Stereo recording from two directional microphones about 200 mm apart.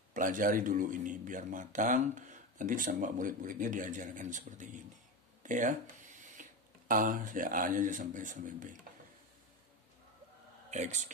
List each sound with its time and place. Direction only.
0.1 s a man's voice: 40° right (ahead or behind)
6.9 s speech: 45° right (ahead or behind)
10.7 s speech: 35° right (ahead or behind)